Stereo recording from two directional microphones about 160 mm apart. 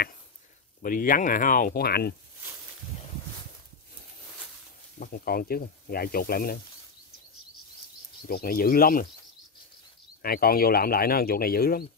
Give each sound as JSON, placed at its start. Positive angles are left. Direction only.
{"t": 0.8, "sound": "speech", "side_deg": 60}
{"t": 4.9, "sound": "speech", "side_deg": 65}
{"t": 8.3, "sound": "speech", "side_deg": 70}
{"t": 10.2, "sound": "speech", "side_deg": 70}